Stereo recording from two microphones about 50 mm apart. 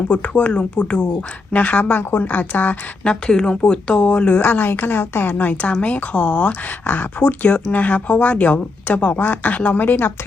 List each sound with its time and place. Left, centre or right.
0.1 s speech: left
2.0 s speech: left
3.0 s speech: centre
4.4 s a woman's voice: left
5.3 s speech: left